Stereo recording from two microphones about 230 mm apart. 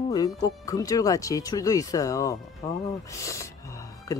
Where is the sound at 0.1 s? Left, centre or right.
Centre.